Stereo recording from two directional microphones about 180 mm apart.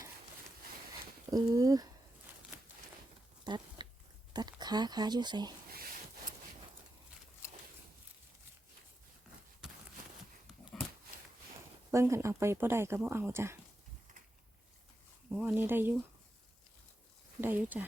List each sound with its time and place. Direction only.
1.3 s speech: 20° right (ahead or behind)
3.4 s a sound: 25° right (ahead or behind)
4.4 s speech: 20° right (ahead or behind)
11.9 s speech: 15° right (ahead or behind)
15.3 s speech: 5° right (ahead or behind)
17.4 s speech: 10° right (ahead or behind)